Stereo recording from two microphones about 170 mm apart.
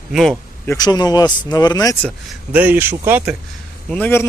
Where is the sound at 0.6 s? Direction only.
25° left (ahead or behind).